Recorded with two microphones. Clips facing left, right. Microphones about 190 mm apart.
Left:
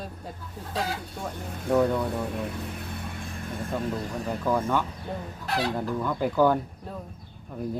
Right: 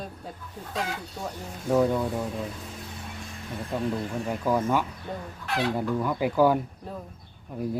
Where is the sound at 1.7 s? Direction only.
5° right (ahead or behind).